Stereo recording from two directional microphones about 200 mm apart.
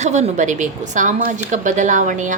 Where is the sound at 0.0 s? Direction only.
35° right (ahead or behind).